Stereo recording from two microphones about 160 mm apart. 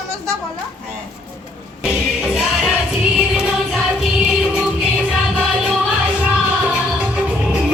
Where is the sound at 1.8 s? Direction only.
Centre (ahead or behind).